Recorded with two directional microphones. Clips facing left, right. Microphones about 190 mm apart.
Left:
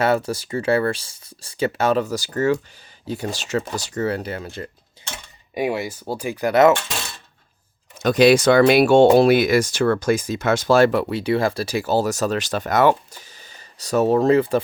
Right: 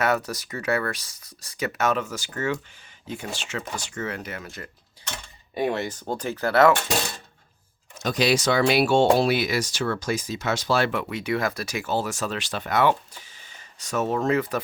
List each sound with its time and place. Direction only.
0.0 s speech: 30° left (ahead or behind)
5.1 s mechanisms: 10° left (ahead or behind)
6.9 s speech: 40° right (ahead or behind)
8.0 s speech: 60° left (ahead or behind); by 14.6 s 30° left (ahead or behind)